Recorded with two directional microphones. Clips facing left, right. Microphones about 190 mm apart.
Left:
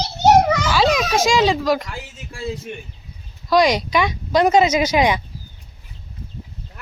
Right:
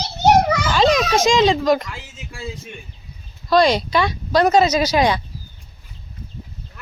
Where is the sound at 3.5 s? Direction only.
15° left (ahead or behind).